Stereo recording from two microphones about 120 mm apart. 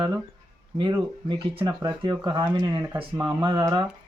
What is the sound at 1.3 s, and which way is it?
Speech, 40° right (ahead or behind).